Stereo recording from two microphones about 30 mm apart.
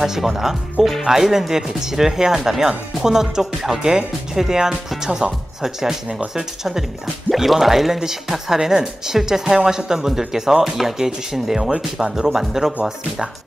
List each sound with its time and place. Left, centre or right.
0.0 s speech: centre